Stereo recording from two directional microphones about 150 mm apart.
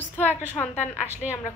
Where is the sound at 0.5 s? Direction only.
15° left (ahead or behind).